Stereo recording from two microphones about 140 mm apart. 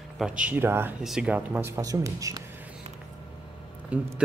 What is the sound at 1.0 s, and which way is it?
Speech, 5° right (ahead or behind).